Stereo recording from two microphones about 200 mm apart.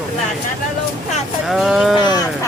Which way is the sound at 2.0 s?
20° left (ahead or behind).